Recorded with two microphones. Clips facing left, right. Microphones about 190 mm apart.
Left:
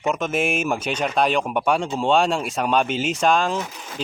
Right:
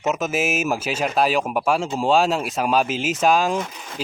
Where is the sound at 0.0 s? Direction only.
5° right (ahead or behind).